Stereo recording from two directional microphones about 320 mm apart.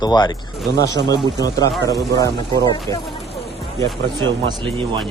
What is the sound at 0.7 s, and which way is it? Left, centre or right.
Speech, right.